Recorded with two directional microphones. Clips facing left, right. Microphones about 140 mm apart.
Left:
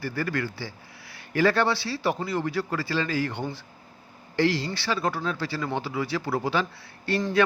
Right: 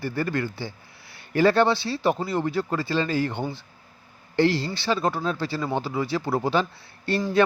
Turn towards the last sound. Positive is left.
turn(degrees=-30)  # may be behind; listen again after turning